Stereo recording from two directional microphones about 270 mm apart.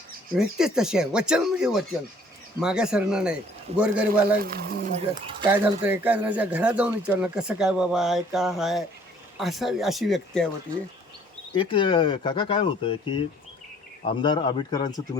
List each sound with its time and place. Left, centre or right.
0.6 s speech: centre
3.7 s a man's voice: right
4.4 s speech: right
5.5 s speech: centre
11.5 s speech: centre